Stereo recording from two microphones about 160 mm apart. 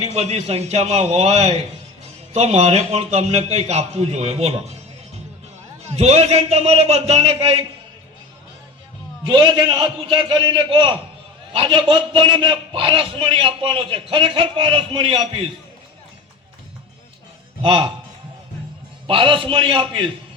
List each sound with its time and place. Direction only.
0.0 s a man's voice: 45° right (ahead or behind)
5.9 s a man's voice: 40° right (ahead or behind)
9.3 s a man's voice: 30° right (ahead or behind)
17.6 s a man's voice: 35° right (ahead or behind)
19.0 s a man's voice: 35° right (ahead or behind)